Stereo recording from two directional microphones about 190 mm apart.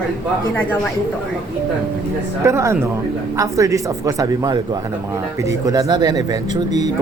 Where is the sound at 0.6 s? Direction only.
5° left (ahead or behind).